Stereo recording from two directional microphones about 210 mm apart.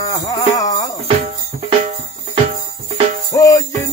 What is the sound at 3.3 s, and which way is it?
Music, 15° left (ahead or behind).